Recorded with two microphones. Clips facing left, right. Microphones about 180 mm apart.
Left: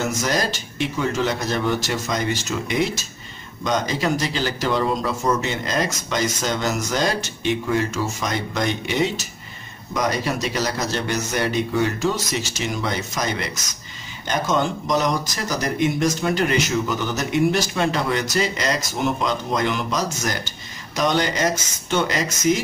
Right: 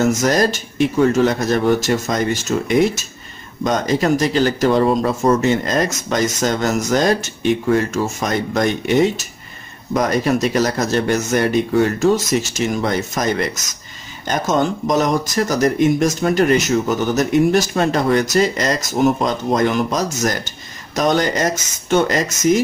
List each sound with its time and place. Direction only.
0.0 s speech: 45° right (ahead or behind)